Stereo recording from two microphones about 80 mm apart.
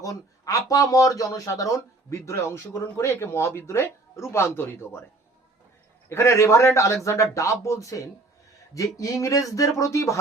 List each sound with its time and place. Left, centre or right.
0.0 s speech: left
6.1 s speech: left